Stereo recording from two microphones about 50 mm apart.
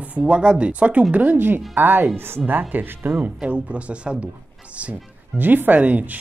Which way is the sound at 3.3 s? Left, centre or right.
Right.